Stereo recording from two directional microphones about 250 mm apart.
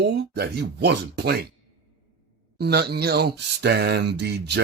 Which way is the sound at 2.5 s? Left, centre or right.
Right.